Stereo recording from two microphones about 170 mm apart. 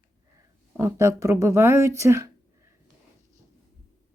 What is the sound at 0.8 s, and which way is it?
Speech, 15° right (ahead or behind).